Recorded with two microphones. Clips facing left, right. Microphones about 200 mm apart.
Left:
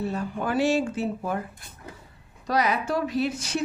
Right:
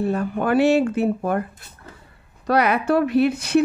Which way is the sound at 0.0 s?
55° right (ahead or behind).